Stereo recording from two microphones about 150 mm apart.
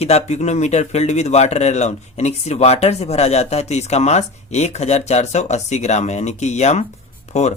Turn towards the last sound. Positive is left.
turn(degrees=45)  # may be behind; listen again after turning